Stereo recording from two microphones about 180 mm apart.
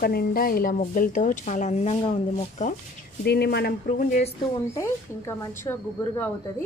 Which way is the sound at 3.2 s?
65° left (ahead or behind).